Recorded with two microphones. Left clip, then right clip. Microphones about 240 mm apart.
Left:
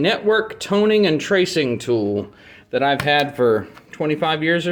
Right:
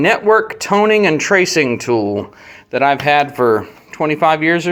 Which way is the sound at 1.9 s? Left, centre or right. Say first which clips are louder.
Right 4 dB; centre.